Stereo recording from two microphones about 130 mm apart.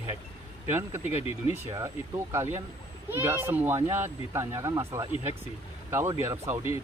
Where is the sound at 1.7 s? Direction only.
25° right (ahead or behind).